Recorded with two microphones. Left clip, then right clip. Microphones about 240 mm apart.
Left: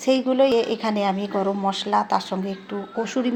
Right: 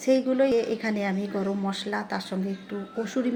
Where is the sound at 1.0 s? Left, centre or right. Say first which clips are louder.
Left 6 dB; left.